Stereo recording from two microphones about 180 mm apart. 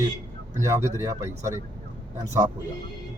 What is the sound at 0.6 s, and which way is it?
Speech, 15° right (ahead or behind).